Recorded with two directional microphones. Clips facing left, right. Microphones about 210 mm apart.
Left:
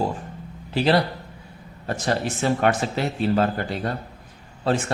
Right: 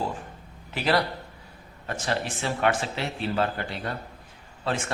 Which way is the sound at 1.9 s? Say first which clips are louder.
Left 5 dB; 40° left (ahead or behind).